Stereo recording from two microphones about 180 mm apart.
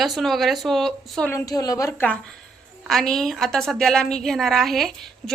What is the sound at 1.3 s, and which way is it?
A woman's voice, 20° left (ahead or behind).